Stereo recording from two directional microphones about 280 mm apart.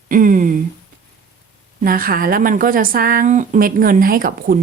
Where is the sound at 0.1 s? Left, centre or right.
Right.